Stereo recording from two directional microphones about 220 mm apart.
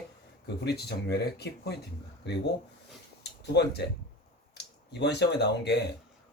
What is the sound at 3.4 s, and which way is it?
Speech, 50° left (ahead or behind).